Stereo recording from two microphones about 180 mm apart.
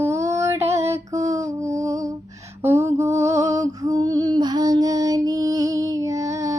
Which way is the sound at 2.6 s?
15° right (ahead or behind).